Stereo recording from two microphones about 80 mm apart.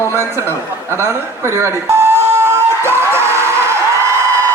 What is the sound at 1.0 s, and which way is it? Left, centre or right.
Speech, right.